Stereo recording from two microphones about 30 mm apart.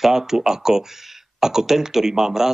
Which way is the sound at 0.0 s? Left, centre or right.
Centre.